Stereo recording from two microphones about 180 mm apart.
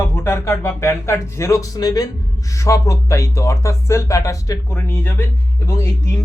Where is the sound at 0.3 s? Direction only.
15° left (ahead or behind).